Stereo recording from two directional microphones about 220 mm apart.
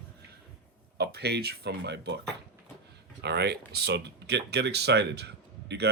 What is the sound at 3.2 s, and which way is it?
Speech, 50° right (ahead or behind).